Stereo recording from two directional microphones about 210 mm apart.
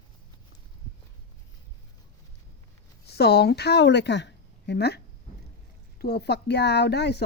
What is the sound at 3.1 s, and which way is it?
A woman's voice, 50° left (ahead or behind).